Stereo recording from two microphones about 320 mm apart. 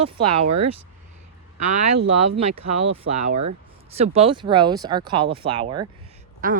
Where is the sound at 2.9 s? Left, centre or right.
Centre.